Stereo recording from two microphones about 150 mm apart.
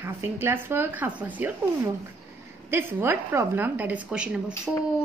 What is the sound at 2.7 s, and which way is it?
A woman's voice, 15° right (ahead or behind).